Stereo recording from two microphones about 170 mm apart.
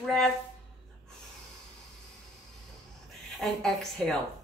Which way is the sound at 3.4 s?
Centre (ahead or behind).